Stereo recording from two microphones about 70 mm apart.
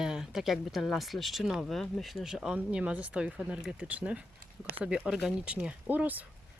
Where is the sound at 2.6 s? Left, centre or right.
Centre.